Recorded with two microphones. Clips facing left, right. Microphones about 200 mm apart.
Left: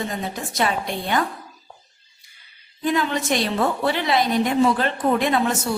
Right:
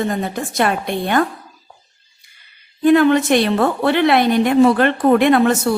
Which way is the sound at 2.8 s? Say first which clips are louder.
Right 11 dB; 60° right (ahead or behind).